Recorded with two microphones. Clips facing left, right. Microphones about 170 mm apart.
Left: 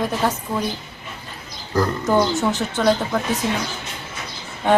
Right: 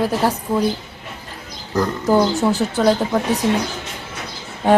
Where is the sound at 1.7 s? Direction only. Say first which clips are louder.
Right 2 dB; 15° right (ahead or behind).